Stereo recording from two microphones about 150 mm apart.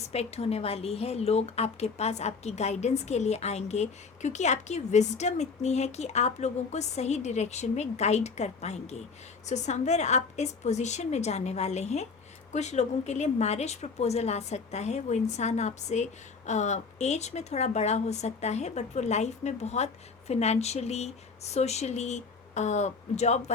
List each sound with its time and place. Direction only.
0.1 s a woman's voice: 45° left (ahead or behind)